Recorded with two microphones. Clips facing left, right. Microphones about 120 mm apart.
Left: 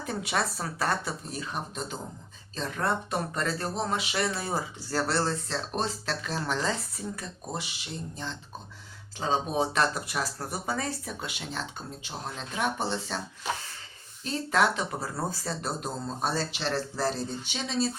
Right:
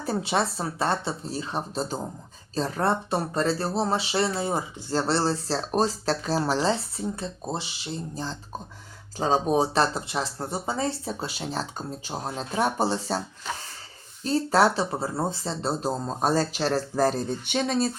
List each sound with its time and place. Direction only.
0.0 s speech: 30° right (ahead or behind)
14.3 s speech: 35° right (ahead or behind); by 17.9 s 55° right (ahead or behind)